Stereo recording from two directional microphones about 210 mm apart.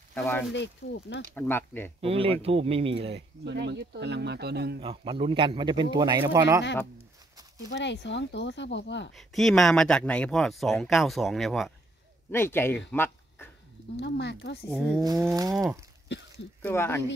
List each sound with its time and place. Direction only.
0.1 s speech: 5° left (ahead or behind)
0.8 s speech: 75° left (ahead or behind)
1.3 s speech: 10° left (ahead or behind)
2.0 s a man's voice: 25° right (ahead or behind)
3.4 s speech: 55° right (ahead or behind)
4.7 s a man's voice: 25° right (ahead or behind)
7.7 s speech: 55° left (ahead or behind)
9.1 s speech: centre (ahead or behind)
12.3 s speech: 10° left (ahead or behind)
12.9 s a sound: 10° left (ahead or behind)
13.9 s speech: 55° left (ahead or behind)
15.0 s a sound: 15° right (ahead or behind)
16.1 s speech: 55° left (ahead or behind)
16.6 s speech: 10° left (ahead or behind)